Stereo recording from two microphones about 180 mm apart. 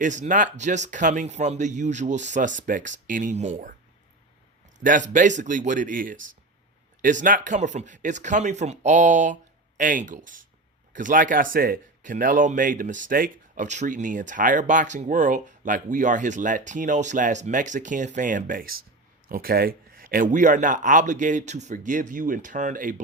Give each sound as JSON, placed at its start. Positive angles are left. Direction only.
{"t": 0.0, "sound": "speech", "side_deg": -45}
{"t": 4.8, "sound": "speech", "side_deg": -45}